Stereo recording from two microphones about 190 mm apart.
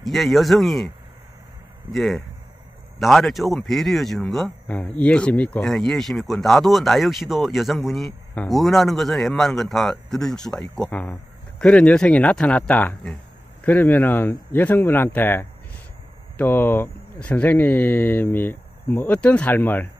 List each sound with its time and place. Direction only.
0.0 s speech: centre (ahead or behind)
1.9 s speech: centre (ahead or behind)